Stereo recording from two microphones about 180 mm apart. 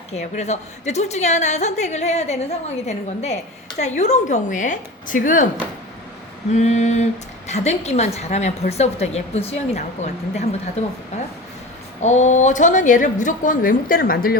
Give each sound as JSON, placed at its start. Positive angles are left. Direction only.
{"t": 0.1, "sound": "a woman's voice", "side_deg": 40}
{"t": 6.5, "sound": "a woman's voice", "side_deg": 40}
{"t": 12.0, "sound": "a woman's voice", "side_deg": 40}